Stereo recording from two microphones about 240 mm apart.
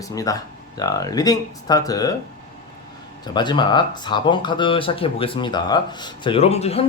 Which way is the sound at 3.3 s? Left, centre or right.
Centre.